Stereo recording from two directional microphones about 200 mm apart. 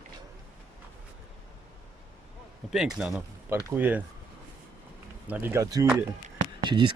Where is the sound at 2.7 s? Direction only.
5° right (ahead or behind).